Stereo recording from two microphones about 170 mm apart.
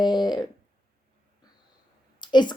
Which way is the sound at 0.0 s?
25° left (ahead or behind).